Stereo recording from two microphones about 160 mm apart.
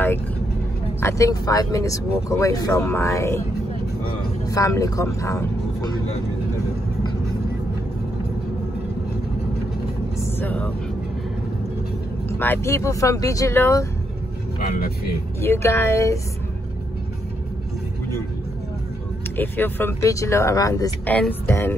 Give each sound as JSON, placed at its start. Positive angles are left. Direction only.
{"t": 1.0, "sound": "speech", "side_deg": 20}
{"t": 4.5, "sound": "speech", "side_deg": 20}
{"t": 10.2, "sound": "speech", "side_deg": 10}
{"t": 12.3, "sound": "speech", "side_deg": 15}
{"t": 15.4, "sound": "speech", "side_deg": 15}
{"t": 19.3, "sound": "speech", "side_deg": 10}